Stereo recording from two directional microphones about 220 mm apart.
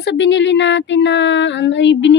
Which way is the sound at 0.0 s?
55° left (ahead or behind).